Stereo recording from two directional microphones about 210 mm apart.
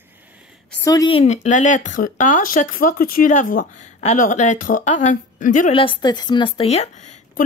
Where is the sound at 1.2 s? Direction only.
35° left (ahead or behind).